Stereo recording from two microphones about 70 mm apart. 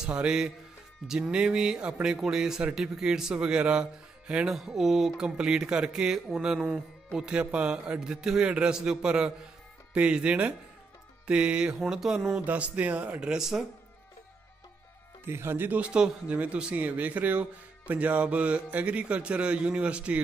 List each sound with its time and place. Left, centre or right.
0.0 s a man's voice: centre
11.8 s a sound: centre
12.4 s a man's voice: centre
15.2 s speech: right
15.8 s a man's voice: centre